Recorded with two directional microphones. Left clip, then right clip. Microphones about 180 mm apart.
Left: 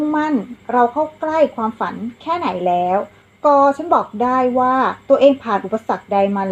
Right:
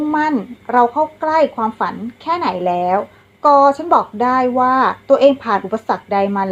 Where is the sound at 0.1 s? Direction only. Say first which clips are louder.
Right 2 dB; 15° right (ahead or behind).